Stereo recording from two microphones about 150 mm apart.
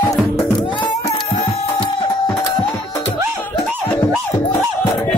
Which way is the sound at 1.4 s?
35° left (ahead or behind).